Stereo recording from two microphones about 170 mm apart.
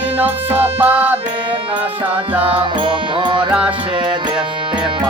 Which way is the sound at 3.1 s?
30° right (ahead or behind).